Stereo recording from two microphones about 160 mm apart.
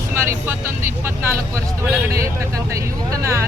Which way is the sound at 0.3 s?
15° right (ahead or behind).